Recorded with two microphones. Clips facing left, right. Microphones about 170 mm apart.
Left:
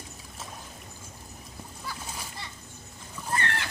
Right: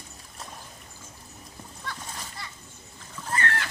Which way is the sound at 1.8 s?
10° left (ahead or behind).